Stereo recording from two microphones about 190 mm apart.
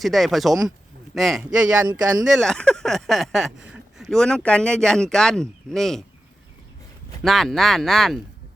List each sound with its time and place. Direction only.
0.0 s speech: centre (ahead or behind)
7.2 s speech: centre (ahead or behind)